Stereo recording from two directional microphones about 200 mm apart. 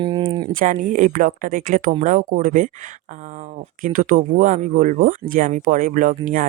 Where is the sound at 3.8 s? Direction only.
40° right (ahead or behind).